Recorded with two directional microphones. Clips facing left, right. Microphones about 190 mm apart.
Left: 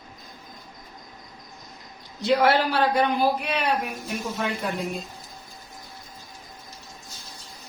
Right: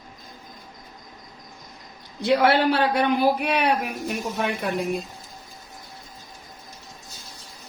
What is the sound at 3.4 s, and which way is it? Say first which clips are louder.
Speech: right 3 dB; 60° right (ahead or behind).